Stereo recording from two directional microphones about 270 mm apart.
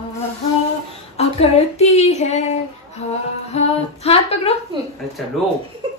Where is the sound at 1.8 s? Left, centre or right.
Left.